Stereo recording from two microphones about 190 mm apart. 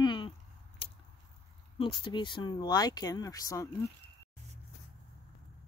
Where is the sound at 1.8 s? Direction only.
25° left (ahead or behind).